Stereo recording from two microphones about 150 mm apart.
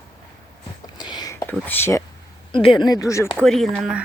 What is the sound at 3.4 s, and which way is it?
Speech, centre (ahead or behind).